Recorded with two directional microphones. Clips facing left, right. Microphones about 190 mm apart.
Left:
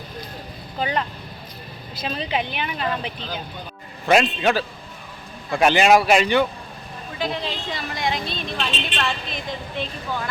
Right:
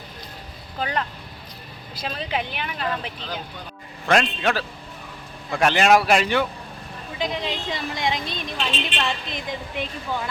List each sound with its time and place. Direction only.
0.8 s a woman's voice: 5° left (ahead or behind)
2.0 s a woman's voice: centre (ahead or behind)
7.2 s a woman's voice: 15° right (ahead or behind)